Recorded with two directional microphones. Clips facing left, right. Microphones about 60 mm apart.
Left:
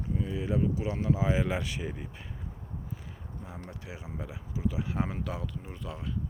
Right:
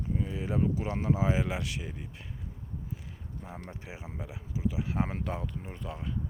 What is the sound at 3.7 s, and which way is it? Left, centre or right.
Speech, right.